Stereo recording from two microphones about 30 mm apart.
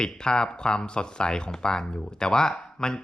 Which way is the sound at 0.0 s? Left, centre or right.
Left.